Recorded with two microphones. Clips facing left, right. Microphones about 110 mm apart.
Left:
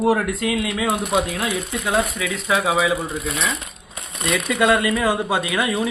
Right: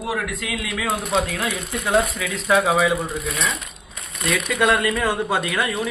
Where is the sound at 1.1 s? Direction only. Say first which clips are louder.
Left 1 dB; 15° left (ahead or behind).